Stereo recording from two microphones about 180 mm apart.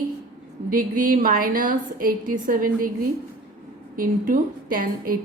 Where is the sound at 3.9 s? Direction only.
50° right (ahead or behind).